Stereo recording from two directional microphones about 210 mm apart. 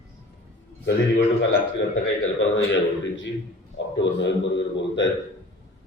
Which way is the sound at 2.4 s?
60° left (ahead or behind).